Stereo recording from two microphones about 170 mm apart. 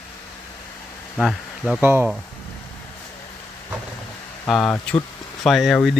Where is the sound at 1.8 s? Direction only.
10° right (ahead or behind).